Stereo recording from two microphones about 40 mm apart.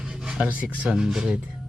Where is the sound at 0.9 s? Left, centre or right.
Centre.